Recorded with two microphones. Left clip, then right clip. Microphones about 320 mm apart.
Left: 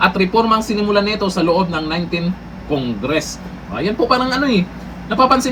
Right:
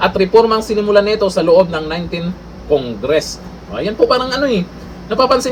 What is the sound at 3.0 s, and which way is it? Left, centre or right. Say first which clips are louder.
Speech: right 4 dB; centre.